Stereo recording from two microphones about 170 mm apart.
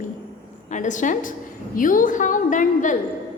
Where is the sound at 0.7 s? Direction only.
45° left (ahead or behind).